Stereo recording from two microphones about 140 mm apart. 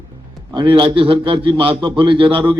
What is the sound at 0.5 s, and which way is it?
A man's voice, 35° right (ahead or behind).